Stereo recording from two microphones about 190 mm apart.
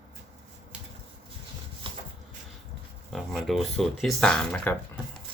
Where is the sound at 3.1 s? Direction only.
Centre (ahead or behind).